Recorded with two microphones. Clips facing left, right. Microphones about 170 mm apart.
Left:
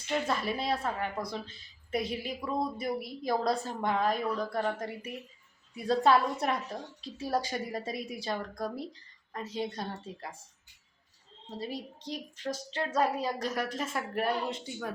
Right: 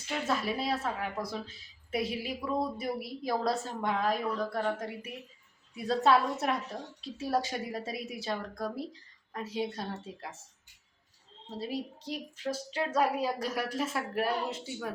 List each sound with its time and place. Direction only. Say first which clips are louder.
0.1 s a woman's voice: left 1 dB; centre (ahead or behind)
11.5 s a woman's voice: right 2 dB; 5° right (ahead or behind)